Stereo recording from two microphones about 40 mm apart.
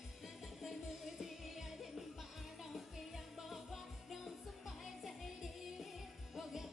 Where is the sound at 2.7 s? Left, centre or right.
Centre.